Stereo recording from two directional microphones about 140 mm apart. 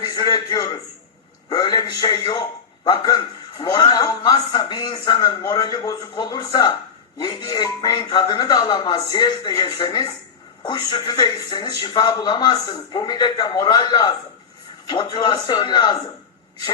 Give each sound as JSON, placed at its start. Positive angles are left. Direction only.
{"t": 0.0, "sound": "a man's voice", "side_deg": 30}